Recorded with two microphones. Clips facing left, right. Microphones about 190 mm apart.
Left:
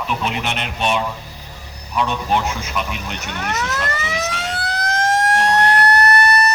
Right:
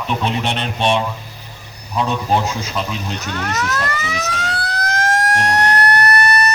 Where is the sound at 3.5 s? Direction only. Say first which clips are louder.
Right 1 dB; 25° left (ahead or behind).